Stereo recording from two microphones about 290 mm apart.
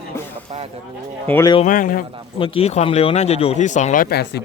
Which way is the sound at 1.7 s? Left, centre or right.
Left.